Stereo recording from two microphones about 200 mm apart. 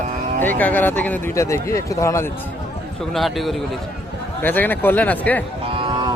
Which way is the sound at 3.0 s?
Centre (ahead or behind).